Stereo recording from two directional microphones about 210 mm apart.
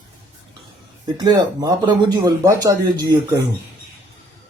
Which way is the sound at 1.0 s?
20° right (ahead or behind).